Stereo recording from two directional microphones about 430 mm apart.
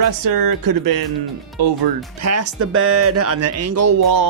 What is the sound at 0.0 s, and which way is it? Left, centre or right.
Speech, right.